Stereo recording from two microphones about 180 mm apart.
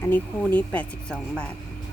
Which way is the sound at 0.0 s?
10° left (ahead or behind).